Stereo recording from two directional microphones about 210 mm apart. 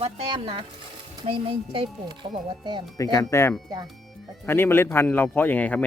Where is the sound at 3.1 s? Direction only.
15° left (ahead or behind).